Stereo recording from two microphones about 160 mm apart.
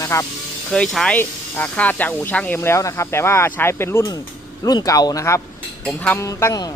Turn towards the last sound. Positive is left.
turn(degrees=20)  # may be behind; listen again after turning